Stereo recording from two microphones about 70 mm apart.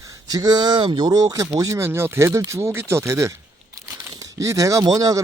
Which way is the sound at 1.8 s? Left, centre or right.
Right.